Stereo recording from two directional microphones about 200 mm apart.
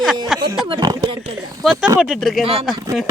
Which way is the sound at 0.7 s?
25° right (ahead or behind).